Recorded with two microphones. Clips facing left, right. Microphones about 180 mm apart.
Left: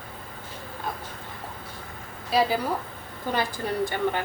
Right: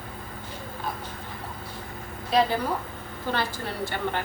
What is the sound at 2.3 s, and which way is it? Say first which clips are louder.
A woman's voice: even; 10° left (ahead or behind).